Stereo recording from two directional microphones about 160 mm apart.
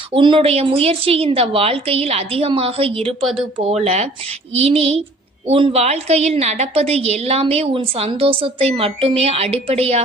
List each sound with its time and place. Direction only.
0.1 s a woman's voice: 30° right (ahead or behind)